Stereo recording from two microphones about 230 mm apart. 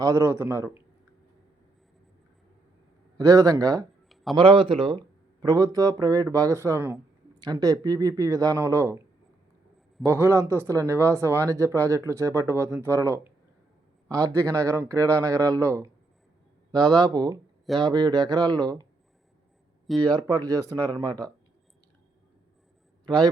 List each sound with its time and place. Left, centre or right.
0.0 s speech: centre
3.2 s speech: centre
4.1 s a sound: centre
4.4 s speech: right
10.1 s speech: centre
14.8 s speech: centre
16.9 s speech: centre
20.0 s speech: centre
23.0 s a man's voice: centre